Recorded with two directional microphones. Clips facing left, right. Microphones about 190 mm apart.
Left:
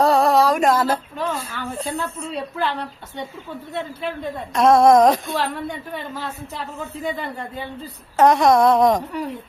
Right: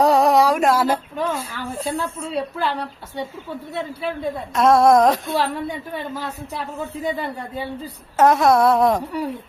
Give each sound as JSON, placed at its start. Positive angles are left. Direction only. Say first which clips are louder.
{"t": 0.0, "sound": "a sound", "louder": "right 1 dB", "side_deg": -15}
{"t": 0.6, "sound": "a woman's voice", "louder": "even", "side_deg": -10}
{"t": 4.0, "sound": "a woman's voice", "louder": "right 2 dB", "side_deg": -5}